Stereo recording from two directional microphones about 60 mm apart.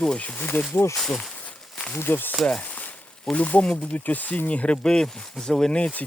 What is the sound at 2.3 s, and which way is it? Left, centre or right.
Speech, centre.